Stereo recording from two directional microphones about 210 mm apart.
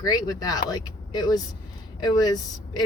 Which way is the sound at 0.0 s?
20° left (ahead or behind).